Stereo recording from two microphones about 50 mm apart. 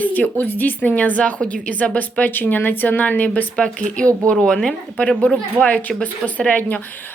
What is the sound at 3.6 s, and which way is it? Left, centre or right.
A woman's voice, left.